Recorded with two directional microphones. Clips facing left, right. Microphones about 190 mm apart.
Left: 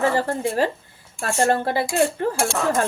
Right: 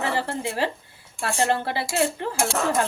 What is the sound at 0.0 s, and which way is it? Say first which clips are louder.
Speech: left 5 dB; 45° left (ahead or behind).